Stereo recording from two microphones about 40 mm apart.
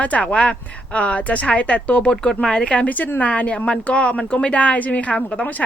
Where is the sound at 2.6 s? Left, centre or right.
Left.